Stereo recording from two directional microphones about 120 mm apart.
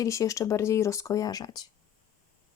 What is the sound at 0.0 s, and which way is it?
Speech, 25° left (ahead or behind).